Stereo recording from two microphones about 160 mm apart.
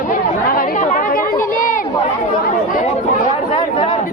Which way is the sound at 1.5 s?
60° left (ahead or behind).